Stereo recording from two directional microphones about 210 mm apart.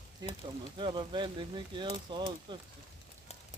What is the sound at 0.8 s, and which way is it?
Speech, 20° right (ahead or behind).